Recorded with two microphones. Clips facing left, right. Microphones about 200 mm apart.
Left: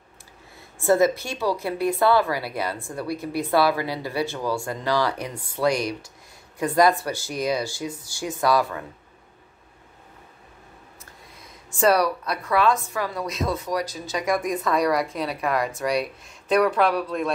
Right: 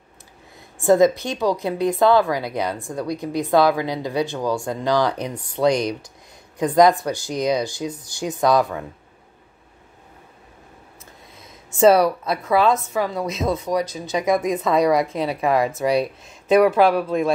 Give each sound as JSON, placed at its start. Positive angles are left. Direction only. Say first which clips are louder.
{"t": 0.7, "sound": "a woman's voice", "louder": "right 4 dB", "side_deg": -15}
{"t": 11.7, "sound": "a woman's voice", "louder": "right 6 dB", "side_deg": -25}
{"t": 16.4, "sound": "speech", "louder": "right 5 dB", "side_deg": -5}